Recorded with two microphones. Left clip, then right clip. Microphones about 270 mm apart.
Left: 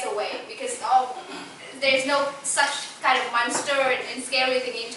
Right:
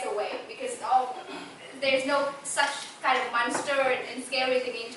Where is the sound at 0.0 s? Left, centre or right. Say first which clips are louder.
Left 3 dB; centre.